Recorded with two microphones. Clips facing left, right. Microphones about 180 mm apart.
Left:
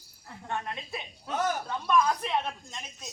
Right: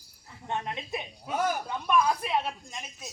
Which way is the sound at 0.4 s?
20° right (ahead or behind).